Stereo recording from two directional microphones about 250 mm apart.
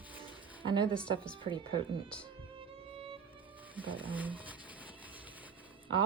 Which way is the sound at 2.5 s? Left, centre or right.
Right.